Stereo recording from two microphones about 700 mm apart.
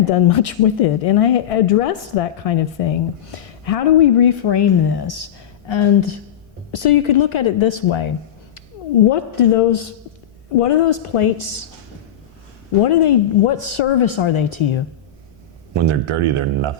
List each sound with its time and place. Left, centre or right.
0.1 s speech: left
12.8 s speech: left
15.7 s speech: right